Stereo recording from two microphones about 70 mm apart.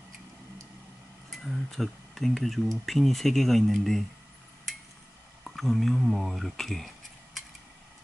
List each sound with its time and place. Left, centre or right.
1.3 s speech: centre
5.4 s a sound: centre
6.0 s speech: centre